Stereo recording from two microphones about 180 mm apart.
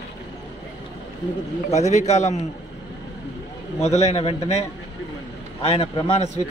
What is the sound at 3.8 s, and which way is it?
A man's voice, 35° left (ahead or behind).